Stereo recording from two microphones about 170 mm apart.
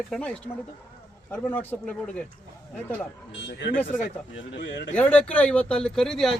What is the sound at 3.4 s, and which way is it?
Speech, 90° left.